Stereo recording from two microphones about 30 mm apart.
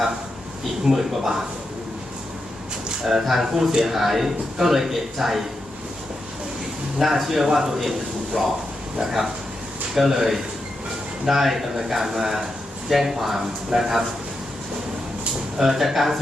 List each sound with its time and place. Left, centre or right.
0.9 s a man's voice: centre
3.1 s a man's voice: centre
7.0 s a man's voice: centre
8.4 s speech: centre
9.0 s a man's voice: centre
15.5 s a man's voice: centre